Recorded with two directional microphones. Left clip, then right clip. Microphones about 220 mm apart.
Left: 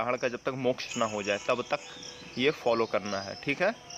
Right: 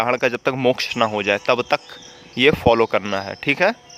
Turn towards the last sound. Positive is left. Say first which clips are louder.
# right 11 dB
turn(degrees=-45)  # may be behind; listen again after turning